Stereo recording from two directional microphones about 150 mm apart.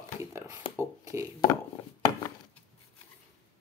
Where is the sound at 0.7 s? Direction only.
35° left (ahead or behind).